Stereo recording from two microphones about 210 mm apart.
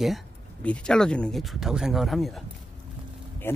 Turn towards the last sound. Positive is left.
turn(degrees=10)  # may be behind; listen again after turning